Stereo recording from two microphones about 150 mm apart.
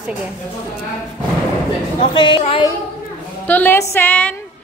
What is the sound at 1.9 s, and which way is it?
Speech, 30° left (ahead or behind).